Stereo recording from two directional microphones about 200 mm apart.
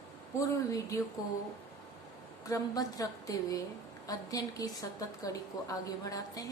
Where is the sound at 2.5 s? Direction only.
20° left (ahead or behind).